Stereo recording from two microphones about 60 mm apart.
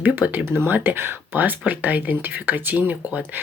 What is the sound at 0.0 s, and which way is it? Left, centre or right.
Speech, right.